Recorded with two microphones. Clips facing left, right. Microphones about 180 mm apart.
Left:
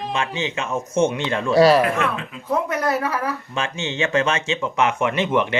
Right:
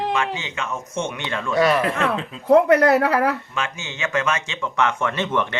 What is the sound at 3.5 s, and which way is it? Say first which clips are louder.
Speech: left 3 dB; 30° left (ahead or behind).